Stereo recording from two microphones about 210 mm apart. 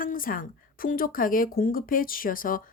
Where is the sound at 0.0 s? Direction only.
40° left (ahead or behind).